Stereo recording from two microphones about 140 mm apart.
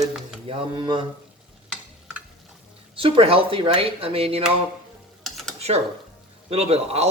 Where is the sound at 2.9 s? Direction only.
40° right (ahead or behind).